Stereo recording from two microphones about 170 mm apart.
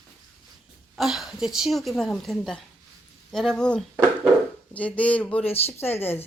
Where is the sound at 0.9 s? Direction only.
Centre (ahead or behind).